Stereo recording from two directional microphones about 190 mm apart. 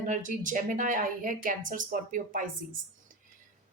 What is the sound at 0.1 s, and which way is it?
Speech, 45° right (ahead or behind).